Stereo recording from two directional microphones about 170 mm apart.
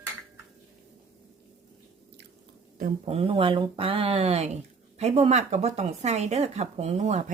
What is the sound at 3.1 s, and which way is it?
Speech, 35° right (ahead or behind).